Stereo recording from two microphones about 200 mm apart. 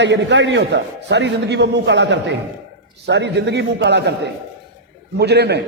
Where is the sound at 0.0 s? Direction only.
60° right (ahead or behind).